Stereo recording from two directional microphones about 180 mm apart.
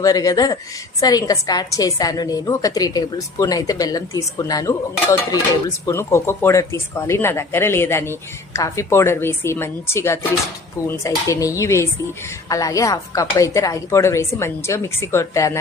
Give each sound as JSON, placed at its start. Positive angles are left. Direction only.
{"t": 0.0, "sound": "a woman's voice", "side_deg": 20}
{"t": 5.9, "sound": "speech", "side_deg": 15}